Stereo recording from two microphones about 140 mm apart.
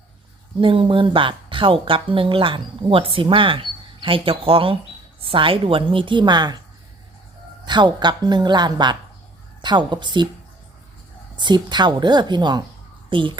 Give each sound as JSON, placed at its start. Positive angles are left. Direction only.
{"t": 0.6, "sound": "speech", "side_deg": -40}
{"t": 7.7, "sound": "speech", "side_deg": -30}
{"t": 11.3, "sound": "speech", "side_deg": -30}